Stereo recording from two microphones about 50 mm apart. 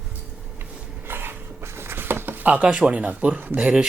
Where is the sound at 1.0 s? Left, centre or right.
Right.